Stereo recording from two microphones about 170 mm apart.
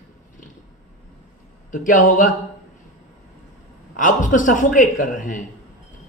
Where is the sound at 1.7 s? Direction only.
50° left (ahead or behind).